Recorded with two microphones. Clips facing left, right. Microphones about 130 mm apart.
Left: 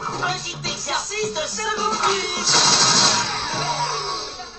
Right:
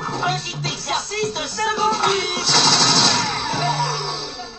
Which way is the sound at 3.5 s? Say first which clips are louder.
Right 6 dB; 35° left (ahead or behind).